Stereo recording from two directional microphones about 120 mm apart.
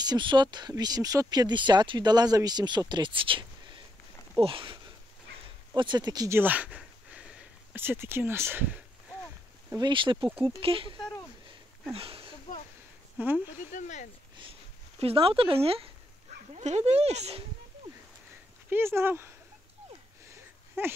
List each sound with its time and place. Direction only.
0.0 s speech: 40° right (ahead or behind)
6.3 s a sound: 15° right (ahead or behind)
7.8 s a sound: 20° right (ahead or behind)
9.8 s speech: 40° right (ahead or behind)
13.2 s speech: 15° right (ahead or behind)
13.7 s speech: 90° left
15.0 s speech: 55° right (ahead or behind)
16.5 s speech: 70° right (ahead or behind)
18.7 s speech: 20° right (ahead or behind)
20.8 s speech: 20° right (ahead or behind)